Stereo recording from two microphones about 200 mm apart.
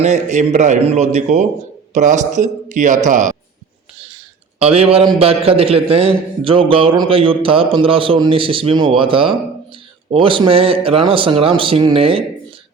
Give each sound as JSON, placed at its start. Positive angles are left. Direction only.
{"t": 0.0, "sound": "a man's voice", "side_deg": -35}
{"t": 4.6, "sound": "a man's voice", "side_deg": -30}